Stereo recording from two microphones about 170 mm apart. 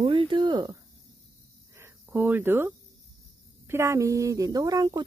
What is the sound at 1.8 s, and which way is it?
Cricket, 10° right (ahead or behind).